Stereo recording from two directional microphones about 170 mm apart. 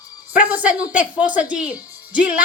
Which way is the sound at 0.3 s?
10° right (ahead or behind).